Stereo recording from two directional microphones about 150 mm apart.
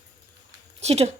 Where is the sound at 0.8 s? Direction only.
45° right (ahead or behind).